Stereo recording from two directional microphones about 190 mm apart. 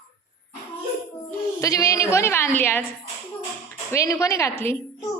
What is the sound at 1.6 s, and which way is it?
A woman's voice, 15° left (ahead or behind).